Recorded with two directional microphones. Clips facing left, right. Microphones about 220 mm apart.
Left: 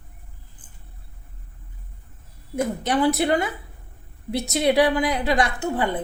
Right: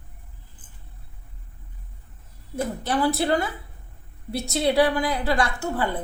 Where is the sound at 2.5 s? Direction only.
20° left (ahead or behind).